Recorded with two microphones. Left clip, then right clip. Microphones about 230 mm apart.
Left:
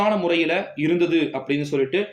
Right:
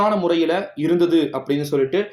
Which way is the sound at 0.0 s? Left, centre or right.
Right.